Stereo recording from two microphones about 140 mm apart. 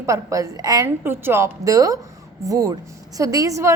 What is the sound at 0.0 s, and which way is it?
Speech, 20° right (ahead or behind).